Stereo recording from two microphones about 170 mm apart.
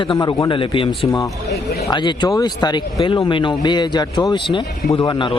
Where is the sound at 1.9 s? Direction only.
25° left (ahead or behind).